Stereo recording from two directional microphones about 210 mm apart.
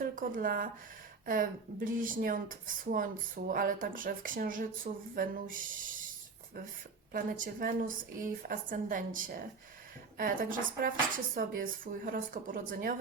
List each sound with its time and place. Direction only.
0.0 s speech: 40° right (ahead or behind)
7.1 s speech: 40° right (ahead or behind)